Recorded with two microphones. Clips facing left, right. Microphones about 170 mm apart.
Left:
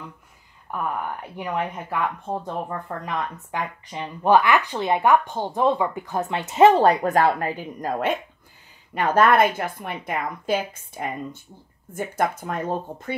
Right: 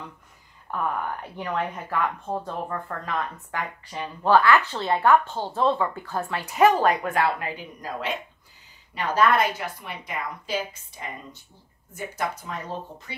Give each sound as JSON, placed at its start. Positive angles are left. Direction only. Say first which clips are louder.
{"t": 0.7, "sound": "speech", "louder": "even", "side_deg": 10}
{"t": 3.5, "sound": "a woman's voice", "louder": "left 2 dB", "side_deg": 20}